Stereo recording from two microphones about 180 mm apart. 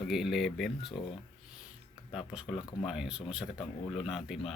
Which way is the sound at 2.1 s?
Centre (ahead or behind).